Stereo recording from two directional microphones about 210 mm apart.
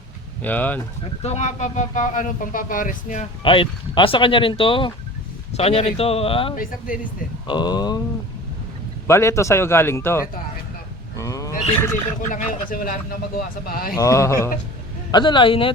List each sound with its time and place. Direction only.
0.4 s a man's voice: 10° left (ahead or behind)
1.2 s speech: 30° left (ahead or behind)
3.4 s speech: 25° left (ahead or behind)
6.6 s speech: 40° left (ahead or behind)
7.4 s speech: 20° left (ahead or behind)
9.0 s a man's voice: 15° left (ahead or behind)
11.2 s wild animals: 15° left (ahead or behind)
12.3 s speech: 40° left (ahead or behind)
13.9 s a man's voice: 15° left (ahead or behind)